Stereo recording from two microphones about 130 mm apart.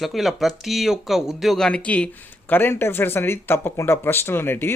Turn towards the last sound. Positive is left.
turn(degrees=15)  # may be behind; listen again after turning